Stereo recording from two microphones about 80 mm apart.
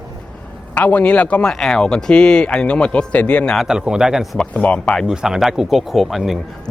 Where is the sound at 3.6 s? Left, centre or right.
Centre.